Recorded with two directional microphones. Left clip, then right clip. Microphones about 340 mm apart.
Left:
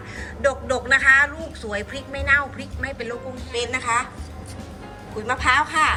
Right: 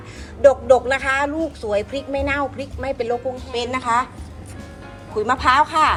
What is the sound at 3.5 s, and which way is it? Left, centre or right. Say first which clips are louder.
Speech: right 1 dB; centre.